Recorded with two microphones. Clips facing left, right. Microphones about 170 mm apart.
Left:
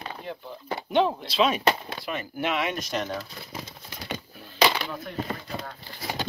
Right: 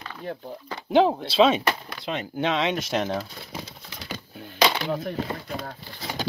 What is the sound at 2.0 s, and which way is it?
Speech, 20° right (ahead or behind).